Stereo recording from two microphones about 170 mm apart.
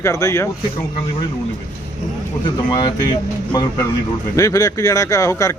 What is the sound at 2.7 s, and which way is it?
Speech, 25° left (ahead or behind).